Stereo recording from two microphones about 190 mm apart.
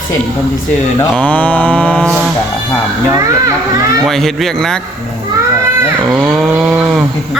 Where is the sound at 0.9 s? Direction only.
5° left (ahead or behind).